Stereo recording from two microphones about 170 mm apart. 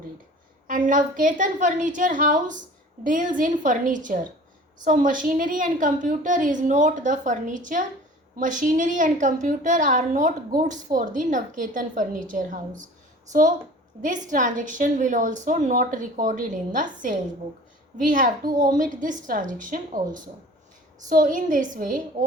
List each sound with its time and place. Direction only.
0.7 s a woman's voice: 50° right (ahead or behind)
14.0 s a woman's voice: 50° right (ahead or behind)